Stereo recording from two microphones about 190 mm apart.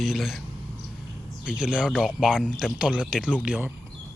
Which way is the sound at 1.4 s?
5° right (ahead or behind).